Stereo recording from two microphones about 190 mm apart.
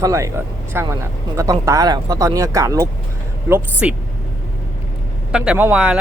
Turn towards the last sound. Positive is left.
turn(degrees=-5)  # may be behind; listen again after turning